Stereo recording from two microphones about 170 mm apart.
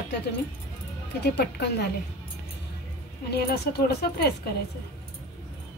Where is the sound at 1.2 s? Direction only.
75° left (ahead or behind).